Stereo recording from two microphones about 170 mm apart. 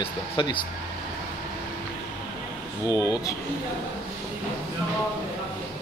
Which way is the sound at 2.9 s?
20° left (ahead or behind).